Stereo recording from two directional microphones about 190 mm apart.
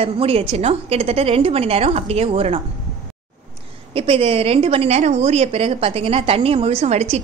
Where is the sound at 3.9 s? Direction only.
30° right (ahead or behind).